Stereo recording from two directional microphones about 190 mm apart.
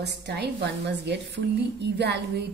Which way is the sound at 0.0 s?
60° right (ahead or behind).